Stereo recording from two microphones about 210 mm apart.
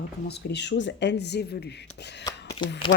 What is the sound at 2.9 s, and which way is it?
Speech, 50° left (ahead or behind).